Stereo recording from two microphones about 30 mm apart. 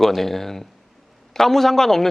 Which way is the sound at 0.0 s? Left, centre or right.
Centre.